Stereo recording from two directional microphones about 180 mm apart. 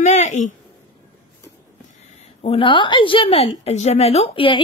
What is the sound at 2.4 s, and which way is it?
A woman's voice, 30° left (ahead or behind).